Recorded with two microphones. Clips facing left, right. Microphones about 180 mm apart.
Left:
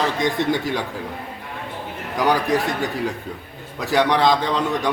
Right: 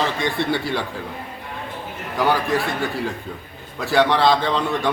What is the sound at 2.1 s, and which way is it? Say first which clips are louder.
Speech: left 1 dB; 15° left (ahead or behind).